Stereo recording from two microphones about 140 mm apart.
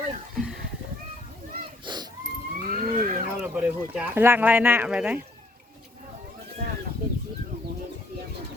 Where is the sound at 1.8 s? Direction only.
30° right (ahead or behind).